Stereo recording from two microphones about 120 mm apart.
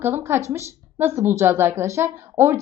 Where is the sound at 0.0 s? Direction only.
20° right (ahead or behind).